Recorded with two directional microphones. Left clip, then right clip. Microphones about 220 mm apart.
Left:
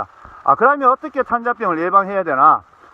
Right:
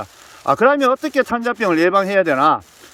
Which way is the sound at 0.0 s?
15° right (ahead or behind).